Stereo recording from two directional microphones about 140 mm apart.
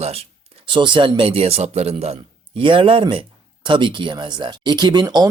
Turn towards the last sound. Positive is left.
turn(degrees=-30)  # may be behind; listen again after turning